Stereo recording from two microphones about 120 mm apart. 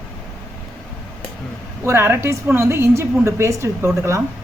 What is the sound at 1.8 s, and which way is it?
A woman's voice, 20° right (ahead or behind).